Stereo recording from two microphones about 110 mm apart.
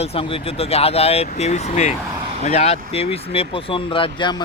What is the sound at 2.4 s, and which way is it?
Speech, 75° left (ahead or behind).